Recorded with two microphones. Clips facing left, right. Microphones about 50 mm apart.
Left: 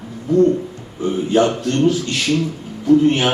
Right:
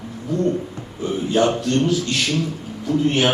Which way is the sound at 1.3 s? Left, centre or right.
Left.